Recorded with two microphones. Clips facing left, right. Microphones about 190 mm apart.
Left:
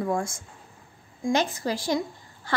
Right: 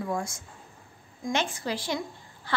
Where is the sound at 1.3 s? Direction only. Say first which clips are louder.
Left 4 dB; 40° left (ahead or behind).